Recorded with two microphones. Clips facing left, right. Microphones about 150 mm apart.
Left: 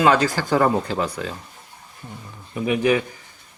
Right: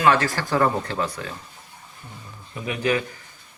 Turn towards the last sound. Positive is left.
turn(degrees=15)  # may be behind; listen again after turning